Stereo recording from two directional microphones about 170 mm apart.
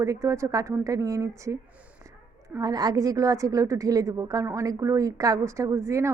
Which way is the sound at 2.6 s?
20° right (ahead or behind).